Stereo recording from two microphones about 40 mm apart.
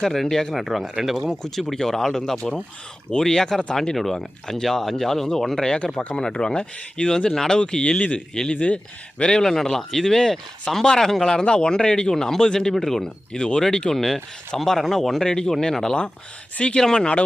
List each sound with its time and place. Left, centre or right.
0.0 s speech: centre
0.5 s speech: centre
1.4 s speech: centre
2.4 s speech: left
3.1 s speech: centre
5.6 s speech: left
7.3 s speech: centre
7.5 s speech: left
12.1 s speech: centre
15.2 s speech: centre